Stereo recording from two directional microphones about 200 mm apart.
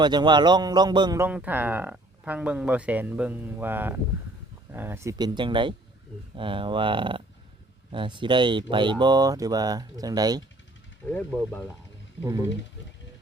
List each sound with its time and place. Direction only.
0.0 s speech: 20° right (ahead or behind)
12.2 s speech: 15° right (ahead or behind)